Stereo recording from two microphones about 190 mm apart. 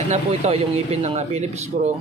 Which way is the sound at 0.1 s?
35° right (ahead or behind).